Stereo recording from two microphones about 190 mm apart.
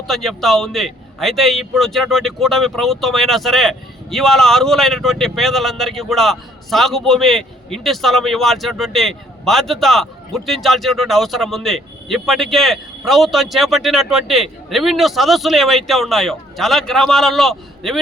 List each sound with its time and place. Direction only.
0.1 s a man's voice: centre (ahead or behind)